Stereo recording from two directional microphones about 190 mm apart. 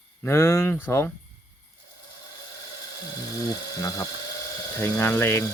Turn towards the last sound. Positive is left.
turn(degrees=15)  # may be behind; listen again after turning